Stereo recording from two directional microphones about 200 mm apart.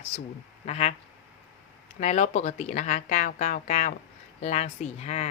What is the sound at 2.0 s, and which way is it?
A woman's voice, 35° left (ahead or behind).